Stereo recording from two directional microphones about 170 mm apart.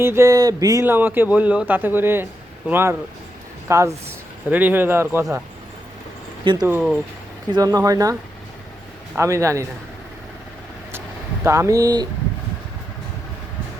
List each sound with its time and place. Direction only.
0.0 s speech: 15° right (ahead or behind)
6.4 s speech: 30° right (ahead or behind)
6.7 s speech: 10° right (ahead or behind)
7.5 s speech: 20° right (ahead or behind)
9.1 s speech: 15° right (ahead or behind)
11.4 s speech: 15° right (ahead or behind)